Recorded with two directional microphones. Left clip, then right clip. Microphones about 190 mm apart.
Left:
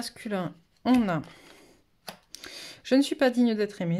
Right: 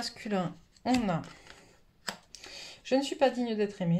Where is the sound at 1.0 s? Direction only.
50° left (ahead or behind).